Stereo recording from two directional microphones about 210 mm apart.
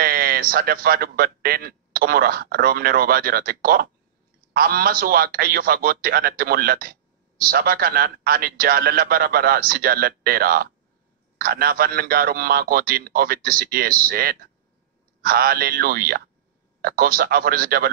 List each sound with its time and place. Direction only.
0.0 s a man's voice: 45° right (ahead or behind)